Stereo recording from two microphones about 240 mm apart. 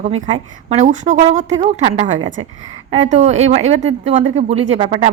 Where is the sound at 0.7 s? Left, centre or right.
Right.